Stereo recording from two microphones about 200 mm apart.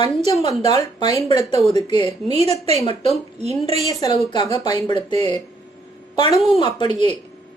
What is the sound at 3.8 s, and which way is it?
Speech, 20° left (ahead or behind).